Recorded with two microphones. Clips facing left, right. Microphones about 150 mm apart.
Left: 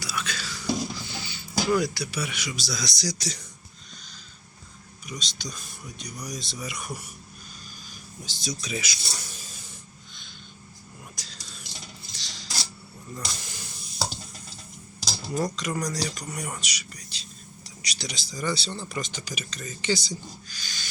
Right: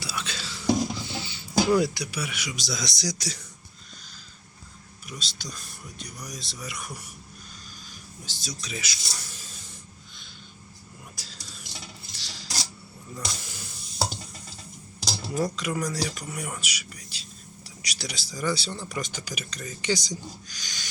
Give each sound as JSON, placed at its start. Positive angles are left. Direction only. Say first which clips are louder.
{"t": 0.0, "sound": "whispering", "louder": "left 1 dB", "side_deg": -30}
{"t": 2.6, "sound": "speech", "louder": "right 1 dB", "side_deg": -25}
{"t": 3.2, "sound": "speech", "louder": "left 1 dB", "side_deg": -5}
{"t": 5.0, "sound": "speech", "louder": "left 2 dB", "side_deg": -5}
{"t": 8.2, "sound": "speech", "louder": "left 5 dB", "side_deg": 20}
{"t": 11.1, "sound": "a sound", "louder": "even", "side_deg": -5}
{"t": 12.1, "sound": "cutlery", "louder": "right 1 dB", "side_deg": -5}
{"t": 13.1, "sound": "hiss", "louder": "right 1 dB", "side_deg": -5}
{"t": 15.3, "sound": "speech", "louder": "even", "side_deg": -5}